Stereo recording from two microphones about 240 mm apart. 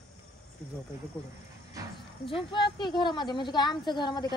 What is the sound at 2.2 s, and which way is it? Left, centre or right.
A woman's voice, left.